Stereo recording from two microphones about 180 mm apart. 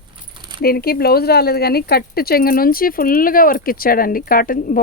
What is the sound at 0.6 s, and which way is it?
Speech, 55° left (ahead or behind).